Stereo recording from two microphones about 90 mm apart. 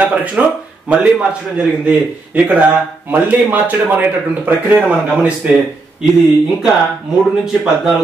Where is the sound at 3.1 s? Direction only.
20° right (ahead or behind).